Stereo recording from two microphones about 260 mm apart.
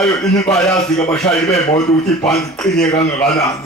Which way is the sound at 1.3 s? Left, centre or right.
Centre.